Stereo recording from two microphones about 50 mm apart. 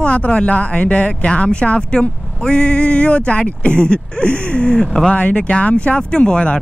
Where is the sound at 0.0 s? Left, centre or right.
Left.